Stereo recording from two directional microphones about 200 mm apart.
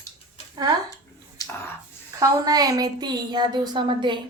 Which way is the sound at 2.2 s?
20° right (ahead or behind).